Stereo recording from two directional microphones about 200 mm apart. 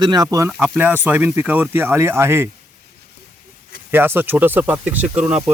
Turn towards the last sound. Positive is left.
turn(degrees=-5)  # may be behind; listen again after turning